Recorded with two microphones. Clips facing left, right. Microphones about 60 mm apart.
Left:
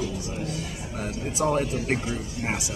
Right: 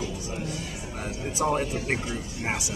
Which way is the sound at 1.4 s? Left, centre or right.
Centre.